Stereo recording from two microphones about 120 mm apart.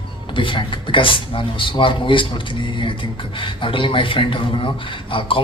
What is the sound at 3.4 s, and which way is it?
Speech, 45° left (ahead or behind).